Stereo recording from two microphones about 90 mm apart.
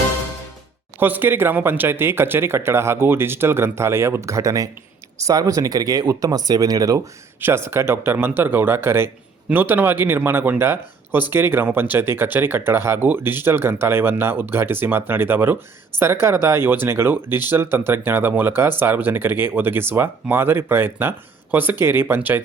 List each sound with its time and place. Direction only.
0.9 s speech: 20° right (ahead or behind); by 7.1 s 40° right (ahead or behind)
7.4 s speech: 25° right (ahead or behind)